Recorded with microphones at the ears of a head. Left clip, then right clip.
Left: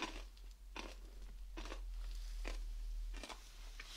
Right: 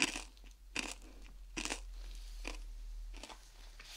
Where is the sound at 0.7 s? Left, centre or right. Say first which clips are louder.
Right 10 dB; right.